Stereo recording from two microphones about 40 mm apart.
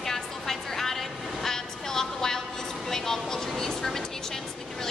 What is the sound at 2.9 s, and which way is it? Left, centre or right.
Vehicle, centre.